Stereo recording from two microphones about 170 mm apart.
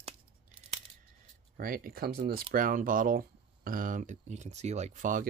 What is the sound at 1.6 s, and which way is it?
Speech, 60° right (ahead or behind).